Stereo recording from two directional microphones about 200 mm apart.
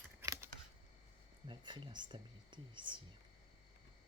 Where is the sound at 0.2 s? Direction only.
15° right (ahead or behind).